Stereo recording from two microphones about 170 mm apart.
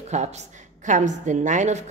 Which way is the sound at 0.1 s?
45° right (ahead or behind).